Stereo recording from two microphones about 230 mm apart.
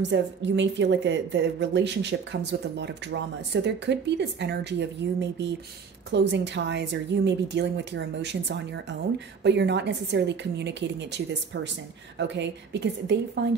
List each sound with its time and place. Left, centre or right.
0.0 s a woman's voice: right